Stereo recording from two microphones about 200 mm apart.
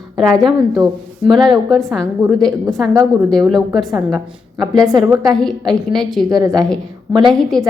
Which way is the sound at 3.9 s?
20° right (ahead or behind).